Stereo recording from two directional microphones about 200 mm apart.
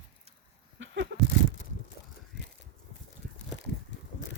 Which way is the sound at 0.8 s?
65° right (ahead or behind).